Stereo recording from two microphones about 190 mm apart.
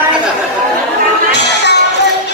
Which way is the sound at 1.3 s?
65° left (ahead or behind).